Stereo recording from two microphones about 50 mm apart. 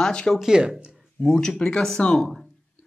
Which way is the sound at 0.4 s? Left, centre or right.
Centre.